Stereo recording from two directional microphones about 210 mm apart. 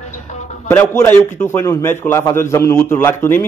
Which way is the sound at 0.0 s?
35° left (ahead or behind).